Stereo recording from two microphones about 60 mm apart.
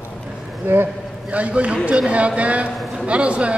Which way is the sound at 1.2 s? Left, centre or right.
Right.